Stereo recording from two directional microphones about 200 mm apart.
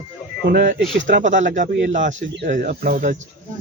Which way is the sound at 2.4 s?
40° right (ahead or behind).